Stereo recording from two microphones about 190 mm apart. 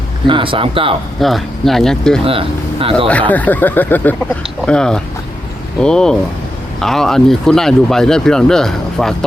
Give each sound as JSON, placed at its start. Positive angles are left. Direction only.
{"t": 0.3, "sound": "speech", "side_deg": -25}
{"t": 1.2, "sound": "speech", "side_deg": 0}
{"t": 2.2, "sound": "speech", "side_deg": -30}
{"t": 3.1, "sound": "speech", "side_deg": 10}